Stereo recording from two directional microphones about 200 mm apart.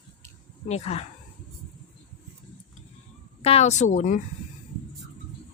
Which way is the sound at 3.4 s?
30° left (ahead or behind).